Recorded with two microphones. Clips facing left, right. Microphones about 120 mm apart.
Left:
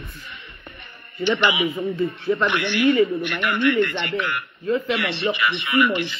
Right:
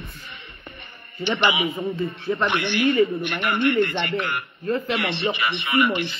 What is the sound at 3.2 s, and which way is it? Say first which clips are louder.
A man's voice: left 1 dB; 45° right (ahead or behind).